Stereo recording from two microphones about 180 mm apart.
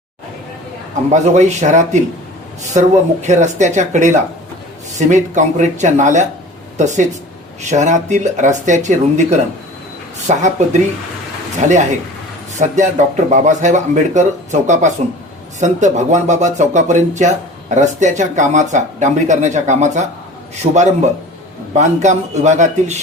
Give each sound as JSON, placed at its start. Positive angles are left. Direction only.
{"t": 1.1, "sound": "speech", "side_deg": -40}